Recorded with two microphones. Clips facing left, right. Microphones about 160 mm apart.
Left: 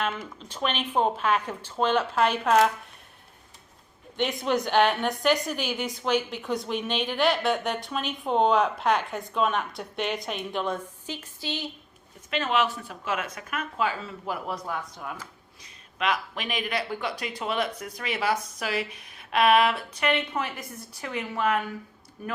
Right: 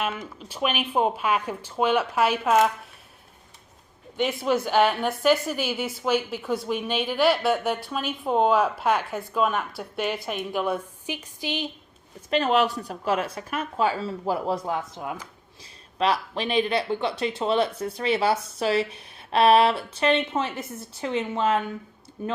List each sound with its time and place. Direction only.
0.0 s speech: 10° right (ahead or behind)
4.2 s speech: 5° right (ahead or behind)
12.3 s speech: 40° right (ahead or behind); by 15.3 s 20° right (ahead or behind)
16.0 s speech: 35° right (ahead or behind)